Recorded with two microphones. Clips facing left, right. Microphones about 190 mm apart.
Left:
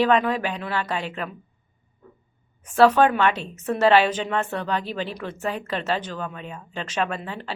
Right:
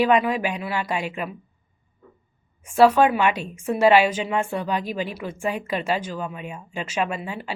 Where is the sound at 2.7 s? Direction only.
10° right (ahead or behind).